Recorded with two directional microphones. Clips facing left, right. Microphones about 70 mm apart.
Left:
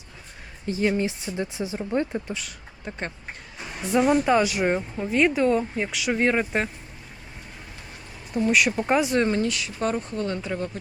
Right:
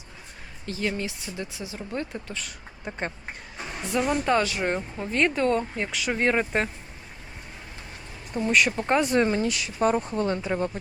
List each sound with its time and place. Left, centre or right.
0.6 s speech: centre
2.4 s speech: centre
3.6 s music: centre
4.0 s speech: centre
8.4 s speech: centre
9.1 s speech: centre